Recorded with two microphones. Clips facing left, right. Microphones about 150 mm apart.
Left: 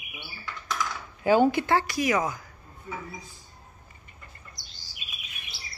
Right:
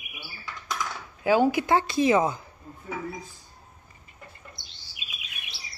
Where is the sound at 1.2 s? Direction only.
Centre (ahead or behind); by 2.4 s 25° right (ahead or behind).